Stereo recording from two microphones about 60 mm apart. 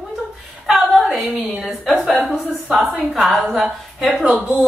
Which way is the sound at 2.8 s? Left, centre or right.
Centre.